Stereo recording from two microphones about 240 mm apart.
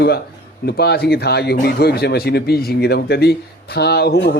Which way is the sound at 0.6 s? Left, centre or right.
Left.